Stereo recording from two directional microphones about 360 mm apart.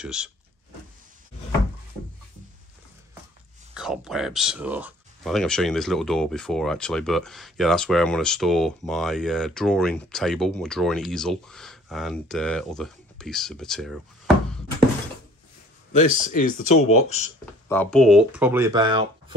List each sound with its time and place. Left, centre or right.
0.0 s speech: centre
3.7 s speech: centre
16.3 s speech: left
17.6 s speech: centre